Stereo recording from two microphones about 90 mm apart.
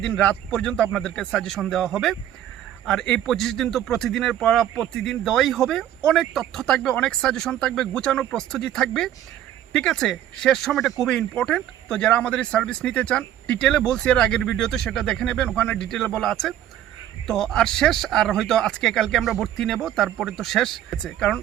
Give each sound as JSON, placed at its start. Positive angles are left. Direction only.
{"t": 0.0, "sound": "speech", "side_deg": 10}